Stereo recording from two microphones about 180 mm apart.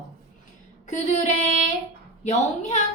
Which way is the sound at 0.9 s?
40° left (ahead or behind).